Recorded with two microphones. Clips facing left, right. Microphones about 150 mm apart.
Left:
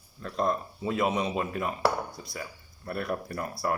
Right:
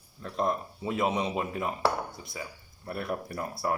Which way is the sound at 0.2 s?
20° right (ahead or behind).